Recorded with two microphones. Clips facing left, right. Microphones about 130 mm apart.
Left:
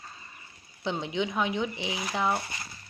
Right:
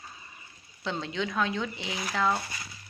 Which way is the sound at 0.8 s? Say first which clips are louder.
Left 2 dB; 15° left (ahead or behind).